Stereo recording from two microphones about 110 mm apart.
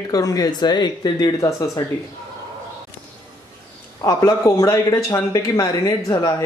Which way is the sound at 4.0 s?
30° left (ahead or behind).